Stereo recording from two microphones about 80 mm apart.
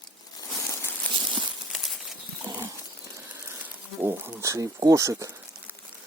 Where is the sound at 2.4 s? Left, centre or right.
Right.